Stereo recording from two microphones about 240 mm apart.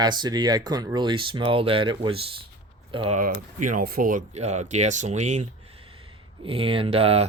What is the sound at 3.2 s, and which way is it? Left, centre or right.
Speech, right.